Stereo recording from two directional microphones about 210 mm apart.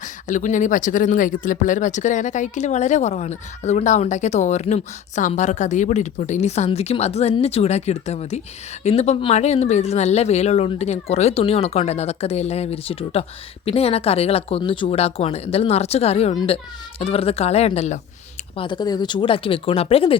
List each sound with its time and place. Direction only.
0.0 s speech: 35° left (ahead or behind)